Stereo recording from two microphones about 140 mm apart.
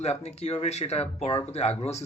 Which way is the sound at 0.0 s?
50° left (ahead or behind).